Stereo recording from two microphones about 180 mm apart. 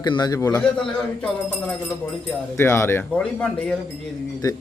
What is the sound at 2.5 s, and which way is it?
A man's voice, 15° left (ahead or behind).